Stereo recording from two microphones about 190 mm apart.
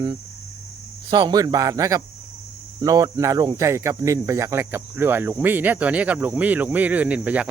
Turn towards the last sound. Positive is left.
turn(degrees=-5)  # may be behind; listen again after turning